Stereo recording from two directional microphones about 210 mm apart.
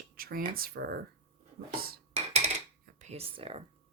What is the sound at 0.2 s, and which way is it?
Speech, 45° right (ahead or behind).